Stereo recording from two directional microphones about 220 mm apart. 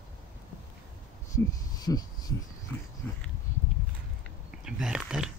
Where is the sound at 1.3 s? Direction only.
15° left (ahead or behind).